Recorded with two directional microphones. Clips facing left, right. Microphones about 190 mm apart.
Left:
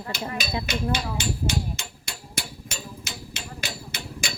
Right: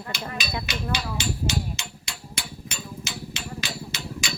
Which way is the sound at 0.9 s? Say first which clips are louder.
Left 1 dB; 50° left (ahead or behind).